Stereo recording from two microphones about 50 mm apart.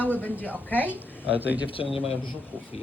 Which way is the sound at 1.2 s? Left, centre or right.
Right.